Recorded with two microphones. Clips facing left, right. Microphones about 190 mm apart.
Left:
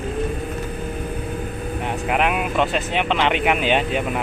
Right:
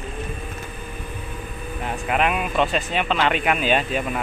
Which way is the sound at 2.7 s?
70° left (ahead or behind).